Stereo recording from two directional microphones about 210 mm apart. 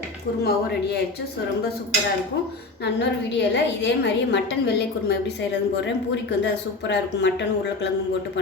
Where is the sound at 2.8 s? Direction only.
55° left (ahead or behind).